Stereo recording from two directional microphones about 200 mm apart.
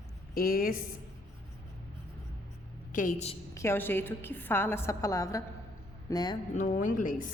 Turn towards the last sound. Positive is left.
turn(degrees=40)  # may be behind; listen again after turning